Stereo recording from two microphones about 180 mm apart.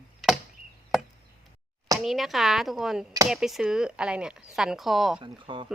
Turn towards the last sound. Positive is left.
turn(degrees=-25)  # may be behind; listen again after turning